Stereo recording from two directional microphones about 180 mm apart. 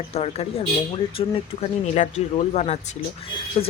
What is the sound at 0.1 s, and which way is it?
Speech, 35° left (ahead or behind).